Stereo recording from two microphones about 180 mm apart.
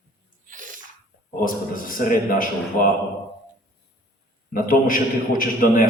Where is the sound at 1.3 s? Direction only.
50° left (ahead or behind).